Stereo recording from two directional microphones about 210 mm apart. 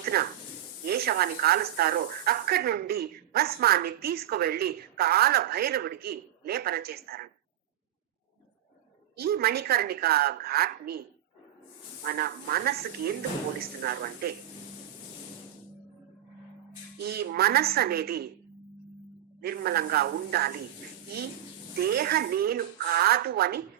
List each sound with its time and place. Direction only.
0.0 s a sound: 45° right (ahead or behind)
0.9 s a woman's voice: 45° right (ahead or behind)
9.1 s a woman's voice: 45° right (ahead or behind)
12.0 s a woman's voice: 45° right (ahead or behind)
17.0 s a woman's voice: 50° right (ahead or behind)
19.4 s a woman's voice: 45° right (ahead or behind)
21.8 s a woman's voice: 45° right (ahead or behind)